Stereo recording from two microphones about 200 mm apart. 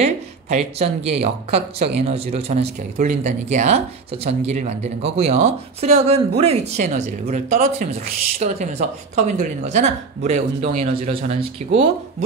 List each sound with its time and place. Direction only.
0.0 s speech: 30° right (ahead or behind)